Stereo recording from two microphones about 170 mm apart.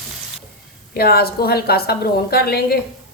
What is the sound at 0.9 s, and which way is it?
A woman's voice, 65° left (ahead or behind).